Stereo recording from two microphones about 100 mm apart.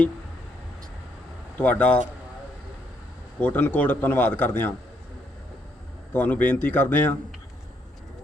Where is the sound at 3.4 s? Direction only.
15° left (ahead or behind).